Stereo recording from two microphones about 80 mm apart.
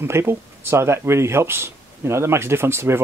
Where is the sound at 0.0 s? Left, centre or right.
Right.